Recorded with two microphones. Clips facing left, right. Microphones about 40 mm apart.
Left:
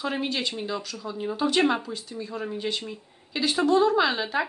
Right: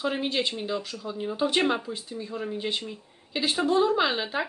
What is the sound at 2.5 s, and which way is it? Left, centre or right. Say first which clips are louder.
Speech: left 1 dB; centre.